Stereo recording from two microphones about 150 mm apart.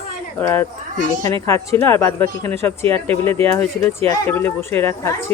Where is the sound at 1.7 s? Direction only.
15° left (ahead or behind).